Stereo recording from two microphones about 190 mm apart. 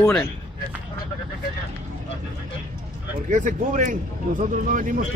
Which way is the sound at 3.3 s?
40° right (ahead or behind).